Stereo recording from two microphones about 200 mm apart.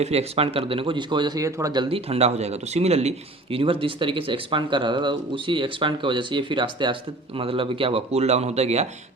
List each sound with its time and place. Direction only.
0.0 s speech: 30° right (ahead or behind)